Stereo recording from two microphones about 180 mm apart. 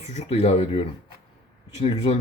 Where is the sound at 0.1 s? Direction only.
35° left (ahead or behind).